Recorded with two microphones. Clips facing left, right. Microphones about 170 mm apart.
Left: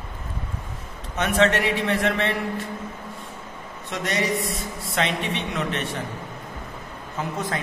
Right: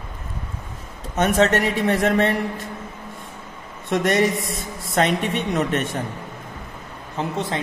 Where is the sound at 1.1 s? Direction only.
40° right (ahead or behind).